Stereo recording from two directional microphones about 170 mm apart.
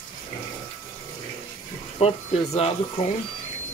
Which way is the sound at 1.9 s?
35° left (ahead or behind).